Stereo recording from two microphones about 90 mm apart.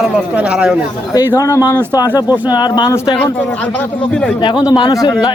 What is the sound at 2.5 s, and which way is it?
Speech, 50° left (ahead or behind).